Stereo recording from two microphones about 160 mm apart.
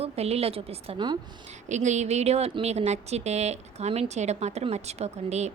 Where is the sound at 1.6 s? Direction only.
45° right (ahead or behind).